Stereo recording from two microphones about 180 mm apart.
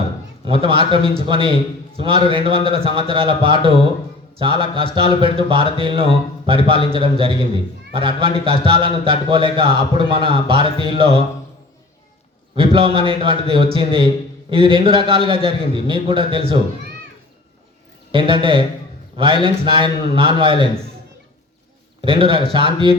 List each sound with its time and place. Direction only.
0.4 s a man's voice: 30° right (ahead or behind)
12.5 s a man's voice: 30° right (ahead or behind)
18.1 s a man's voice: 30° right (ahead or behind)
22.0 s a man's voice: 30° right (ahead or behind)